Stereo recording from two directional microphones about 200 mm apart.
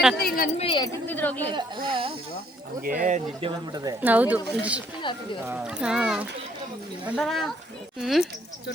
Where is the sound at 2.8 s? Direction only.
40° right (ahead or behind).